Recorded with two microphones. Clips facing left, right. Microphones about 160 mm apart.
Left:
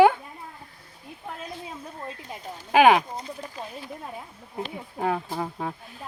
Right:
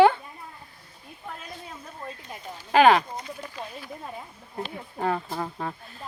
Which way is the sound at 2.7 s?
10° left (ahead or behind).